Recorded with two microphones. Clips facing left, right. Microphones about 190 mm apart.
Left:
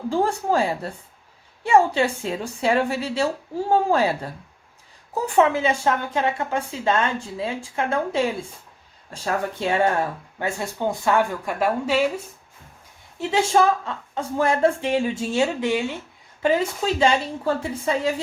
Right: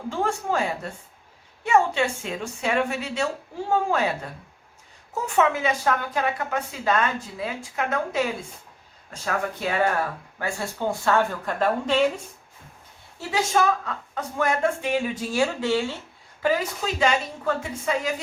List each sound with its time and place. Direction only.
0.1 s a woman's voice: 35° left (ahead or behind)
5.1 s a woman's voice: 35° left (ahead or behind); by 12.2 s 5° left (ahead or behind)
13.1 s a woman's voice: 25° left (ahead or behind)
16.4 s a woman's voice: 25° left (ahead or behind)